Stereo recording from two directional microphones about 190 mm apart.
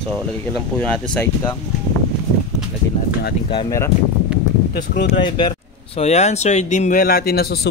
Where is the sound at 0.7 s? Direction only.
5° left (ahead or behind).